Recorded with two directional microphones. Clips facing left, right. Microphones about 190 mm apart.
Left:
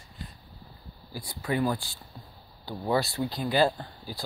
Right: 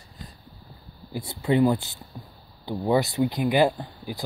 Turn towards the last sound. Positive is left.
turn(degrees=-15)  # may be behind; listen again after turning